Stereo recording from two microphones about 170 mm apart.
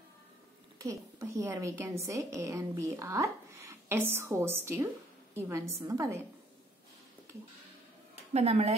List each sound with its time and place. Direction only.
0.7 s a woman's voice: 20° right (ahead or behind)
8.3 s a woman's voice: 40° right (ahead or behind)